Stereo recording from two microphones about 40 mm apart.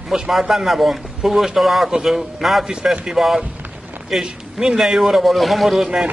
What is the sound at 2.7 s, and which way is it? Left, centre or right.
A man's voice, centre.